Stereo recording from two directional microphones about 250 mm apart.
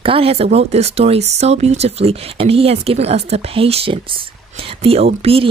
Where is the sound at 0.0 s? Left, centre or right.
Right.